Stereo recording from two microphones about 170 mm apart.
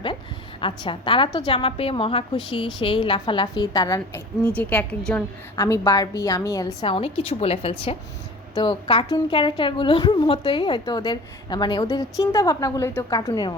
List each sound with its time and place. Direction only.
0.6 s a woman's voice: 30° left (ahead or behind)
4.5 s a woman's voice: 10° left (ahead or behind)
6.8 s a woman's voice: 35° left (ahead or behind)